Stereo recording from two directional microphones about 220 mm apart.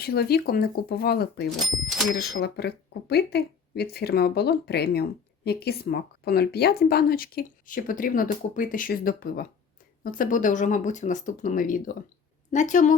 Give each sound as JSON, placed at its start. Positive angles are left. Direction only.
{"t": 0.0, "sound": "a woman's voice", "side_deg": 45}
{"t": 1.5, "sound": "speech", "side_deg": 0}
{"t": 2.1, "sound": "a woman's voice", "side_deg": 45}